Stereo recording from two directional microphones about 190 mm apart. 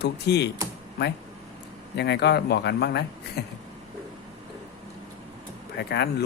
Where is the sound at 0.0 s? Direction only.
60° left (ahead or behind).